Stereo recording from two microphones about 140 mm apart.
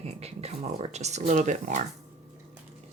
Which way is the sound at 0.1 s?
45° right (ahead or behind).